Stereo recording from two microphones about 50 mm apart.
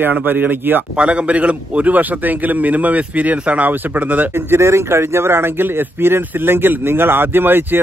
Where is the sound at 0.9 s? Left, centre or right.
Right.